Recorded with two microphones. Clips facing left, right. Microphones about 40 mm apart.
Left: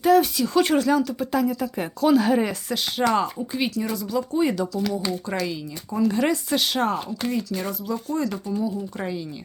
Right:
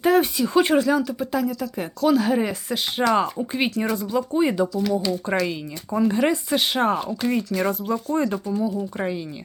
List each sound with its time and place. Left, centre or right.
0.0 s a sound: right
0.3 s speech: centre
1.5 s speech: centre
3.3 s speech: right
4.3 s speech: centre
4.7 s speech: centre
5.2 s speech: right
7.3 s speech: right
8.4 s speech: centre
9.0 s speech: right